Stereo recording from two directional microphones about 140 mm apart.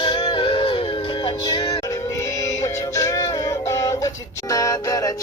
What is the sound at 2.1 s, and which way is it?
Music, 20° left (ahead or behind).